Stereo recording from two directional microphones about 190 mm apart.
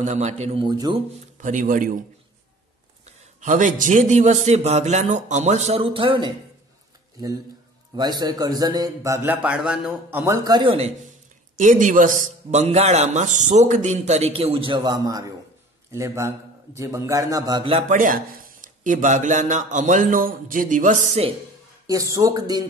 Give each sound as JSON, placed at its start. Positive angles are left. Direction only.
{"t": 0.0, "sound": "a man's voice", "side_deg": -35}
{"t": 0.7, "sound": "a man's voice", "side_deg": -20}
{"t": 1.4, "sound": "a man's voice", "side_deg": -40}
{"t": 3.3, "sound": "a man's voice", "side_deg": -40}
{"t": 7.9, "sound": "a man's voice", "side_deg": -20}
{"t": 11.5, "sound": "a man's voice", "side_deg": -45}
{"t": 17.9, "sound": "a man's voice", "side_deg": -45}
{"t": 21.8, "sound": "a man's voice", "side_deg": -15}